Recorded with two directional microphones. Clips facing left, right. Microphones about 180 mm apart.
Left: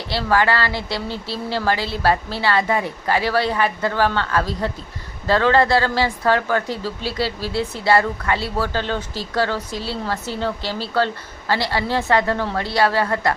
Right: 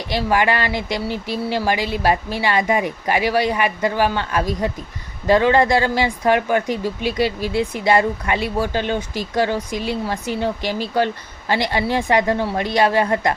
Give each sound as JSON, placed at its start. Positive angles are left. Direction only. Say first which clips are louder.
{"t": 0.1, "sound": "speech", "louder": "even", "side_deg": -15}